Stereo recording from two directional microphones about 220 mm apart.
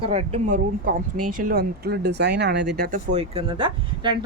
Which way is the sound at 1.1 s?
90° right.